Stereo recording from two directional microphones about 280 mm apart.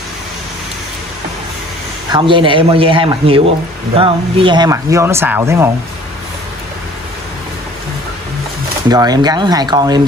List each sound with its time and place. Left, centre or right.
2.1 s speech: centre
8.9 s speech: centre